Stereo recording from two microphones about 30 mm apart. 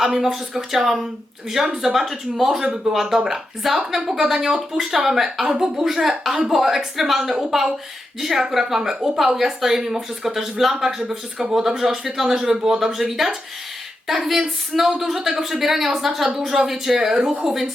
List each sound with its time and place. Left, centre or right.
0.0 s speech: centre
2.9 s speech: centre